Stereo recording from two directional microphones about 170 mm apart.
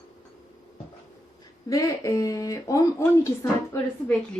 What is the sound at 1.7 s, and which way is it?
Speech, 20° left (ahead or behind).